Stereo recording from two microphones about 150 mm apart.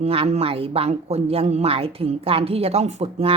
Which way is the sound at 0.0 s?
40° right (ahead or behind).